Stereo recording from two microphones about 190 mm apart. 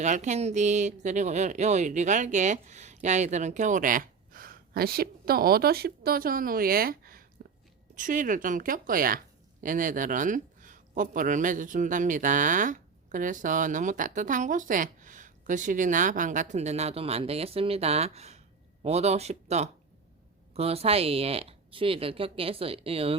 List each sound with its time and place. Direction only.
0.0 s speech: 40° right (ahead or behind)